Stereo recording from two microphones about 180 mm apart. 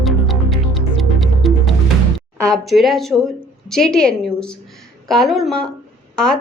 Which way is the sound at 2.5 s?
Centre (ahead or behind).